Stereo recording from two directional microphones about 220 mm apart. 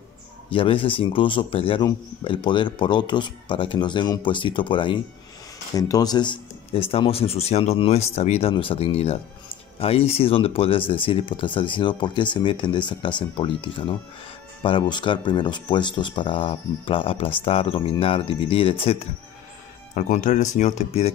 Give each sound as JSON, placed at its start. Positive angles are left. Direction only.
{"t": 0.5, "sound": "a man's voice", "side_deg": 25}